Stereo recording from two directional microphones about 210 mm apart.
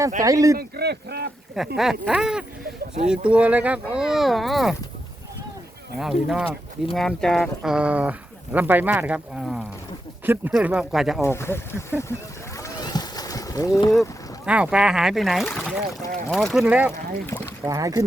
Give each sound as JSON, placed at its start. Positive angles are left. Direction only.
{"t": 0.2, "sound": "speech", "side_deg": -15}
{"t": 0.6, "sound": "speech", "side_deg": -50}
{"t": 1.5, "sound": "speech", "side_deg": 0}
{"t": 6.0, "sound": "speech", "side_deg": 0}
{"t": 11.2, "sound": "speech", "side_deg": 10}
{"t": 12.5, "sound": "boat", "side_deg": 15}
{"t": 14.4, "sound": "speech", "side_deg": -5}
{"t": 16.9, "sound": "speech", "side_deg": 15}
{"t": 17.7, "sound": "speech", "side_deg": -15}